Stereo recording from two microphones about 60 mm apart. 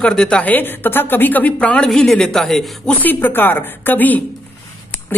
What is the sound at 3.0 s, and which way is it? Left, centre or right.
Speech, left.